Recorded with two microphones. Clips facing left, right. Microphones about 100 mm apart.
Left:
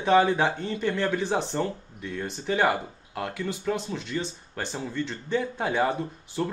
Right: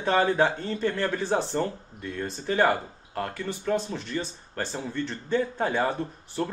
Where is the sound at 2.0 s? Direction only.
Centre (ahead or behind).